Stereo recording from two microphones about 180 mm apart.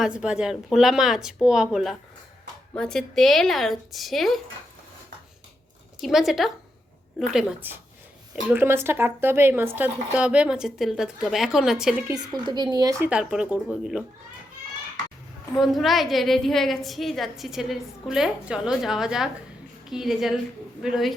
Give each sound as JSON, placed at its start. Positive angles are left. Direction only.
{"t": 0.0, "sound": "a woman's voice", "side_deg": -5}
{"t": 6.0, "sound": "a woman's voice", "side_deg": 0}
{"t": 12.0, "sound": "a woman's voice", "side_deg": -20}
{"t": 13.1, "sound": "a woman's voice", "side_deg": -5}
{"t": 15.5, "sound": "a woman's voice", "side_deg": 0}